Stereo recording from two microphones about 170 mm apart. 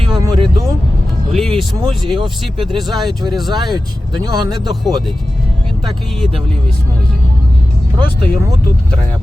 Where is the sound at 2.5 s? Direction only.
25° right (ahead or behind).